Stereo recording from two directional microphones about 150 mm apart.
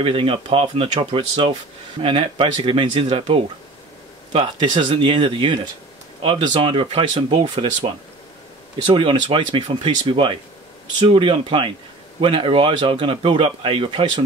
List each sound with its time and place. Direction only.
0.0 s speech: 35° right (ahead or behind)